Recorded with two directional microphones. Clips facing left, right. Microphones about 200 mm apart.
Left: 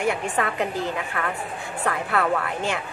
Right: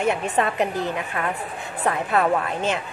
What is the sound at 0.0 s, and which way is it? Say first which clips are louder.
A woman's voice: right 2 dB; 20° right (ahead or behind).